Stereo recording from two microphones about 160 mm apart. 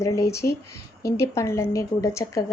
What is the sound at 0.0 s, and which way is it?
A woman's voice, 20° left (ahead or behind).